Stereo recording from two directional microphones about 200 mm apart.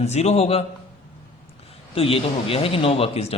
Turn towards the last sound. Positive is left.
turn(degrees=30)  # may be behind; listen again after turning